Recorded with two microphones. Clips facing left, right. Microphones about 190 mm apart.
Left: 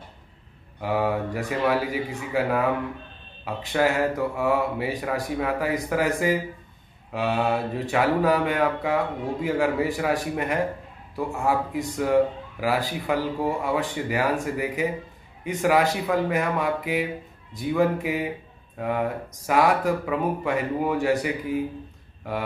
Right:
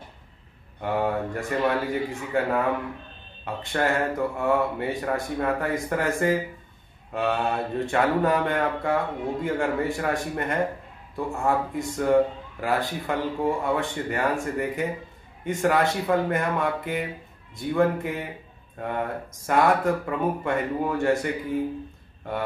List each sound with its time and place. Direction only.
0.7 s speech: 5° left (ahead or behind)